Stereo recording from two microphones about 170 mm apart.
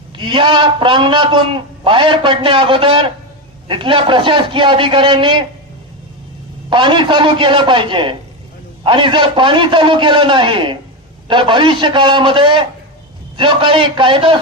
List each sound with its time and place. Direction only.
0.2 s a man's voice: 30° right (ahead or behind)
6.7 s a man's voice: 30° right (ahead or behind)